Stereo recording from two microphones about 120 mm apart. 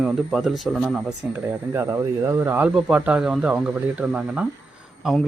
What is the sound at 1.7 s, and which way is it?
A man's voice, 20° right (ahead or behind).